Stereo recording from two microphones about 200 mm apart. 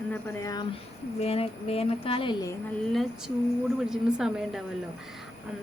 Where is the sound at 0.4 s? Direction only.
20° left (ahead or behind).